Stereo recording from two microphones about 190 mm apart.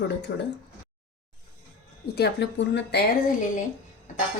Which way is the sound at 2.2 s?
65° left (ahead or behind).